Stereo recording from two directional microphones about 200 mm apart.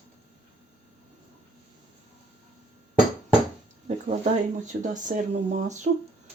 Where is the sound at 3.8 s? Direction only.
35° right (ahead or behind).